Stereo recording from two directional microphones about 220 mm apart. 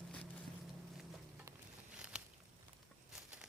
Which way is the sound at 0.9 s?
5° right (ahead or behind).